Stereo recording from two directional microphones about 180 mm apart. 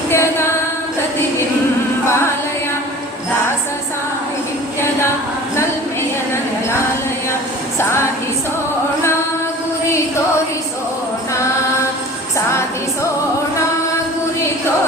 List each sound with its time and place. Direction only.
0.1 s music: 15° left (ahead or behind)
7.8 s a sound: 15° left (ahead or behind)
12.5 s music: 15° left (ahead or behind)